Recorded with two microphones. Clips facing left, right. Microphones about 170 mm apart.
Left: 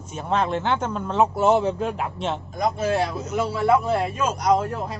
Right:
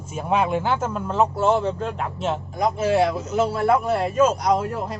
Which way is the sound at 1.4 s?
10° left (ahead or behind).